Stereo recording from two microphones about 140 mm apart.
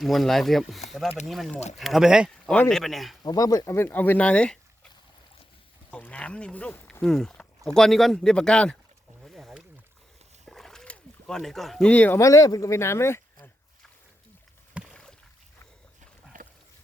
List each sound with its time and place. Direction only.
0.0 s speech: centre (ahead or behind)
3.2 s speech: 25° left (ahead or behind); by 4.9 s 10° left (ahead or behind)
5.9 s speech: 10° left (ahead or behind)
9.2 s a sound: centre (ahead or behind)
12.2 s speech: 25° left (ahead or behind)
14.8 s a sound: 10° right (ahead or behind)